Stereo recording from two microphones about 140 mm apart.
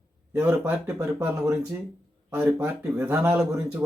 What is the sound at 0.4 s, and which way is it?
Speech, 10° right (ahead or behind).